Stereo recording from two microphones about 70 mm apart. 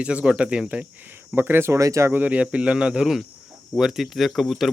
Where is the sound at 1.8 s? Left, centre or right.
Right.